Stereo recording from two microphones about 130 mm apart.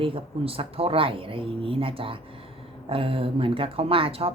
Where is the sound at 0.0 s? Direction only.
45° right (ahead or behind).